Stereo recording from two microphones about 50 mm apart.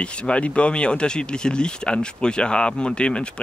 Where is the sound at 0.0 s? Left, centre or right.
Left.